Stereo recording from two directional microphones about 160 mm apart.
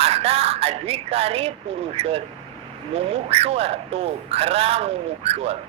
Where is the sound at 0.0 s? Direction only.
40° right (ahead or behind).